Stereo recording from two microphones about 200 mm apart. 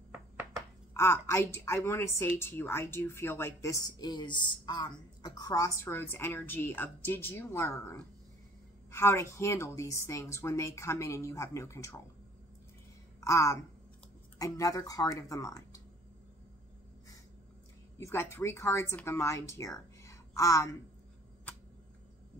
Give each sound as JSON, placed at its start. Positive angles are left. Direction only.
{"t": 0.9, "sound": "a woman's voice", "side_deg": 15}
{"t": 13.2, "sound": "a woman's voice", "side_deg": 15}
{"t": 17.9, "sound": "a woman's voice", "side_deg": 10}